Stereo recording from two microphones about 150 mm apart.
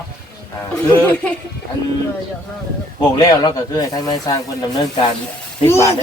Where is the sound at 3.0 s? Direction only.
25° left (ahead or behind).